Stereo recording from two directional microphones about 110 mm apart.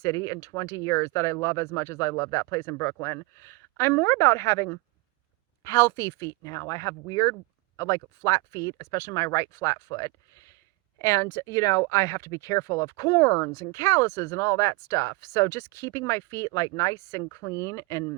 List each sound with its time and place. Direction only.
0.0 s speech: 30° left (ahead or behind)